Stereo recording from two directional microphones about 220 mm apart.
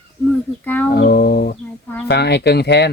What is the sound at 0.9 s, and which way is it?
Speech, 45° left (ahead or behind).